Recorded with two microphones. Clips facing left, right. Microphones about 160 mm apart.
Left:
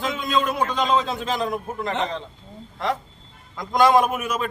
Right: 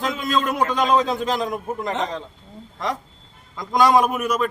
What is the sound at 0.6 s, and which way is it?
A man's voice, 10° right (ahead or behind).